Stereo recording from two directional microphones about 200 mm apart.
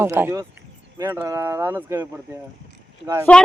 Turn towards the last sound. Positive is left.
turn(degrees=5)  # may be behind; listen again after turning